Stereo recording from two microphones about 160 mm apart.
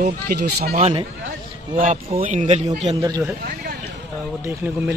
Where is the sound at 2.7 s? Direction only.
45° right (ahead or behind).